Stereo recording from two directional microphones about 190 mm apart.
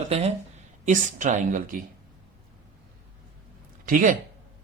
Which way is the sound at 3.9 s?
45° right (ahead or behind).